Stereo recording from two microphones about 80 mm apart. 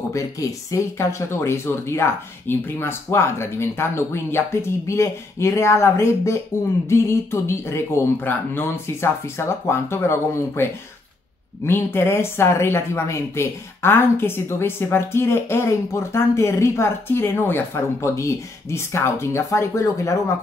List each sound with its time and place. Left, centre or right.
0.1 s a woman's voice: left